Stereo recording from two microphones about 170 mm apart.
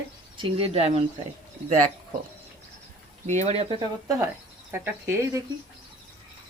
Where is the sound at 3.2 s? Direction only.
40° right (ahead or behind).